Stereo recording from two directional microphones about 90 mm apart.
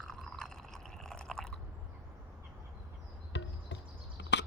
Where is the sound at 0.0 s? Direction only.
5° left (ahead or behind).